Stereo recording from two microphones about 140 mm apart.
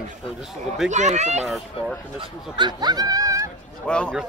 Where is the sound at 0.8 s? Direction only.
55° right (ahead or behind).